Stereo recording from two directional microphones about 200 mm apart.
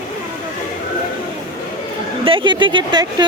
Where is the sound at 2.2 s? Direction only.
25° right (ahead or behind).